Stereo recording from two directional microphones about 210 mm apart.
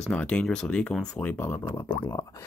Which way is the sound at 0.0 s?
5° left (ahead or behind).